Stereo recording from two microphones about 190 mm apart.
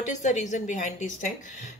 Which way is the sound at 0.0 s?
40° left (ahead or behind).